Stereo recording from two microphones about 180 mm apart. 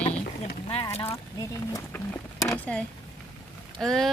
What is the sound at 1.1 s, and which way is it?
Speech, 15° left (ahead or behind).